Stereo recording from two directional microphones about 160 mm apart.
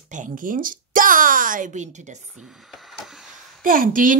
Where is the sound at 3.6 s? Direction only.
60° right (ahead or behind).